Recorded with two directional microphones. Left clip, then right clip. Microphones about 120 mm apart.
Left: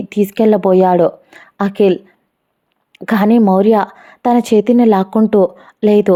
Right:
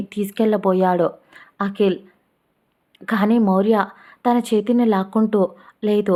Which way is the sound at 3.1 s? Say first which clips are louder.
Left 7 dB; 55° left (ahead or behind).